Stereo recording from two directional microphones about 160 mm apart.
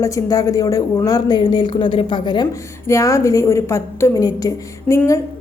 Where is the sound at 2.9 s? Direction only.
20° left (ahead or behind).